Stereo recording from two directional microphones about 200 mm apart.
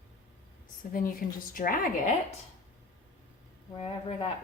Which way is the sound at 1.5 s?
45° left (ahead or behind).